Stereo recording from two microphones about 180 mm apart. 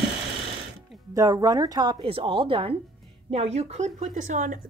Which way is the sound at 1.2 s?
20° right (ahead or behind).